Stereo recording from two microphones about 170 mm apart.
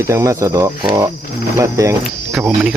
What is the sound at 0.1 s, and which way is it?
Speech, 20° right (ahead or behind).